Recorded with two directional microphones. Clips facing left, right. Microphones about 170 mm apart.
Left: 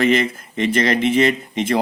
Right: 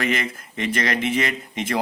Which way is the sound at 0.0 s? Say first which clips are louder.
Left 8 dB; 25° left (ahead or behind).